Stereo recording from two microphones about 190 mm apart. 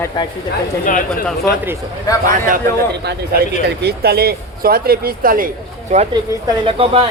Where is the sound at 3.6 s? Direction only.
55° right (ahead or behind).